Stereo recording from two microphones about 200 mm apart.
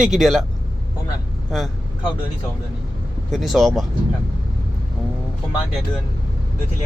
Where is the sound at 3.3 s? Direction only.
Centre (ahead or behind).